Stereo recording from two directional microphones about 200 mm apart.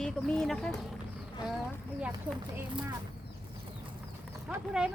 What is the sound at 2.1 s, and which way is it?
Speech, 20° right (ahead or behind).